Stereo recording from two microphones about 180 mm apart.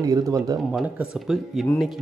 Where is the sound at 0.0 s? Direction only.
20° right (ahead or behind).